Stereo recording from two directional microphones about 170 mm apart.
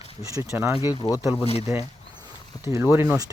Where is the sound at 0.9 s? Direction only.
20° left (ahead or behind).